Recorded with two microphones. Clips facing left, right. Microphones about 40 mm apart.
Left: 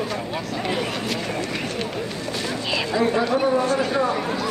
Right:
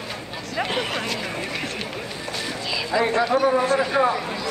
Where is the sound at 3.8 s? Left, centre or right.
Centre.